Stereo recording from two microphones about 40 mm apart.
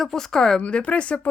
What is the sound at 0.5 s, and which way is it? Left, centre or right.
Speech, left.